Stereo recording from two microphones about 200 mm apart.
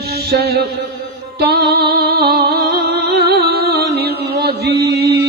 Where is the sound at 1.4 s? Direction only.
50° right (ahead or behind).